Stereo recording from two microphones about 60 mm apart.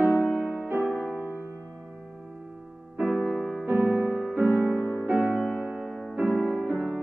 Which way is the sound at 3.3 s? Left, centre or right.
Centre.